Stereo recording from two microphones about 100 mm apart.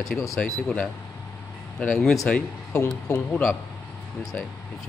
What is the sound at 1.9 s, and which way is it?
Speech, centre (ahead or behind).